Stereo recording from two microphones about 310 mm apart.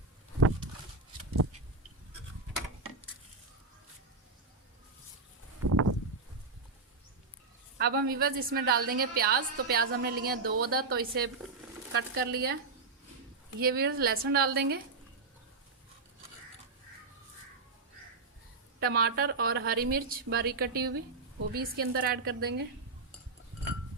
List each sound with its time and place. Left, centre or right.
5.6 s a sound: right
7.8 s a woman's voice: right
13.6 s a woman's voice: right
18.8 s a woman's voice: right